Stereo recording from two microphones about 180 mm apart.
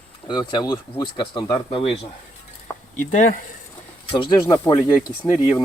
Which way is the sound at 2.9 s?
45° left (ahead or behind).